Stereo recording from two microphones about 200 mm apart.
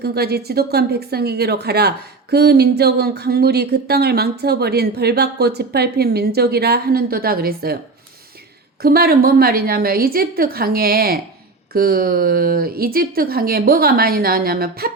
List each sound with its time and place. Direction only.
0.0 s speech: 50° right (ahead or behind)
8.8 s speech: 50° right (ahead or behind)